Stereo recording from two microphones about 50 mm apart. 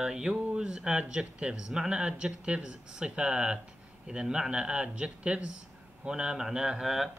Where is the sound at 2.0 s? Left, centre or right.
Centre.